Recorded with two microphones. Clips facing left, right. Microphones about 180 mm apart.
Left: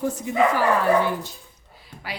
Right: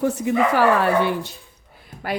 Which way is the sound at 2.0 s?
50° right (ahead or behind).